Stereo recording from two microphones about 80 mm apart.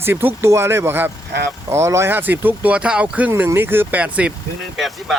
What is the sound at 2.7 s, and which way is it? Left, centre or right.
Speech, centre.